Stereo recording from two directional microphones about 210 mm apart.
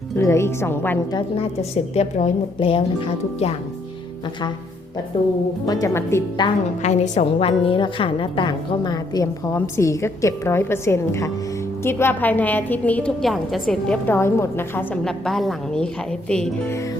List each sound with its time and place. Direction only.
0.2 s a woman's voice: 15° left (ahead or behind)
1.4 s a woman's voice: 30° left (ahead or behind)
5.1 s a woman's voice: 25° left (ahead or behind)
6.8 s a woman's voice: 35° left (ahead or behind); by 16.7 s 5° left (ahead or behind)